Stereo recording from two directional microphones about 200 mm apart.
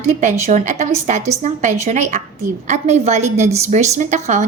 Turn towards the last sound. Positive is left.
turn(degrees=-35)  # may be behind; listen again after turning